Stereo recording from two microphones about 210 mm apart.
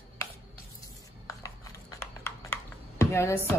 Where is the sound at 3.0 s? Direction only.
10° left (ahead or behind).